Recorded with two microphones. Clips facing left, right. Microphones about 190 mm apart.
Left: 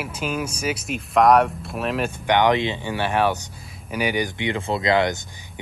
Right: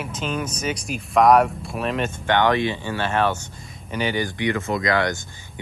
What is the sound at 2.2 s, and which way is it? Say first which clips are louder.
Speech: left 1 dB; 15° left (ahead or behind).